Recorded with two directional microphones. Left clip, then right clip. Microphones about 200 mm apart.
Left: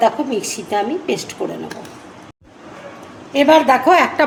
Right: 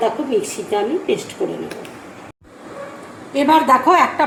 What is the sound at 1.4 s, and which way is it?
Speech, 90° left.